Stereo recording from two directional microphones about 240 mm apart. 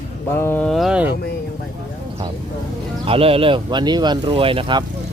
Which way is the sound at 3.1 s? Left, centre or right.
Right.